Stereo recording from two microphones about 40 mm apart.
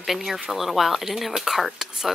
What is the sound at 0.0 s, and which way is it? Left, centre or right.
Speech, centre.